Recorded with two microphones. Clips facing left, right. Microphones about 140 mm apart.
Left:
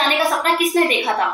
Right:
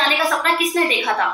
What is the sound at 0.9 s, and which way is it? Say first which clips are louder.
Speech: left 1 dB; 25° left (ahead or behind).